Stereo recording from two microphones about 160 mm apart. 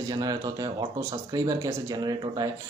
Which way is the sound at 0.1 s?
25° right (ahead or behind).